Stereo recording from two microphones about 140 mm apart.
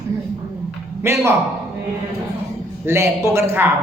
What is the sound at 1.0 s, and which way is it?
Speech, 15° right (ahead or behind).